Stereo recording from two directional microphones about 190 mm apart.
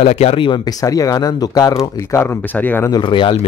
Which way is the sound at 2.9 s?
25° left (ahead or behind).